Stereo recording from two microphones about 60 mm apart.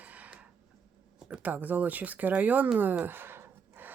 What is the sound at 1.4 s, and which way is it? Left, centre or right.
Speech, right.